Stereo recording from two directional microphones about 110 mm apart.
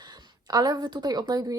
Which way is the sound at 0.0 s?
35° right (ahead or behind).